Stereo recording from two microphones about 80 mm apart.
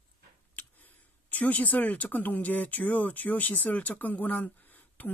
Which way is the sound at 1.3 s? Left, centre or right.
Left.